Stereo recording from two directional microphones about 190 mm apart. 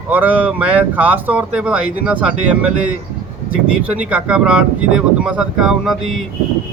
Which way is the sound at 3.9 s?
5° right (ahead or behind).